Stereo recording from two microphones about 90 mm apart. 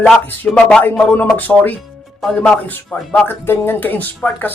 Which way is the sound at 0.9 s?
10° left (ahead or behind).